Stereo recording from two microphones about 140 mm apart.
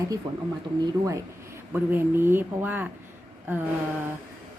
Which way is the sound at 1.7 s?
15° right (ahead or behind).